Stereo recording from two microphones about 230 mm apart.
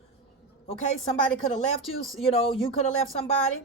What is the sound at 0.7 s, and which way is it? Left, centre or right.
Music, left.